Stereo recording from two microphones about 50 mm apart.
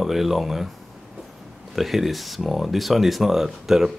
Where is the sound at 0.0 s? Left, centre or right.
Centre.